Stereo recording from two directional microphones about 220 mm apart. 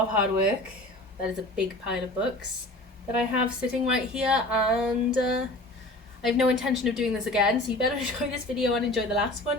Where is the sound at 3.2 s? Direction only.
5° right (ahead or behind).